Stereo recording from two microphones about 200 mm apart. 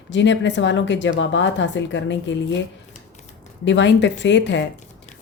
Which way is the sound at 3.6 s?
65° left (ahead or behind).